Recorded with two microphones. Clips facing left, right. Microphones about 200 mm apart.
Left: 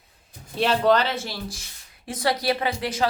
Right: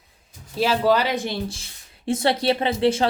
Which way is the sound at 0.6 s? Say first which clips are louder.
Right 1 dB; 5° right (ahead or behind).